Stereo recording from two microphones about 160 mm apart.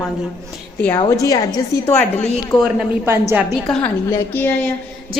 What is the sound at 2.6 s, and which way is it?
Speech, 5° right (ahead or behind).